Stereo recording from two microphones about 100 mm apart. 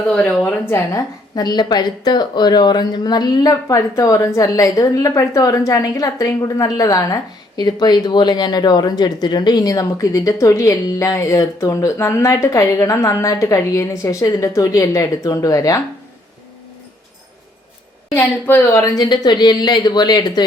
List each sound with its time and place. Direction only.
0.1 s a woman's voice: 10° left (ahead or behind)
0.6 s a woman's voice: 25° left (ahead or behind)
1.4 s a woman's voice: 45° left (ahead or behind)
18.1 s a woman's voice: 25° left (ahead or behind)
18.7 s a woman's voice: 35° left (ahead or behind)